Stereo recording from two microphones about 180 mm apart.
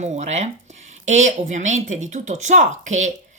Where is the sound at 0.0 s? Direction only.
40° right (ahead or behind).